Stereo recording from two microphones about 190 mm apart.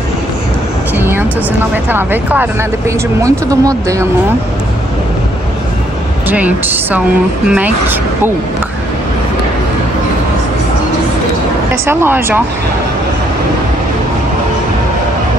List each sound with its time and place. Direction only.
0.9 s vehicle: 10° right (ahead or behind)
1.9 s speech: 10° right (ahead or behind)
6.2 s speech: 10° right (ahead or behind)
11.8 s speech: 10° right (ahead or behind)